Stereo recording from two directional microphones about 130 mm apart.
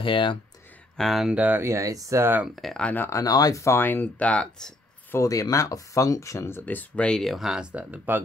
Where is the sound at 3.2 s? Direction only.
30° left (ahead or behind); by 5.1 s 10° left (ahead or behind).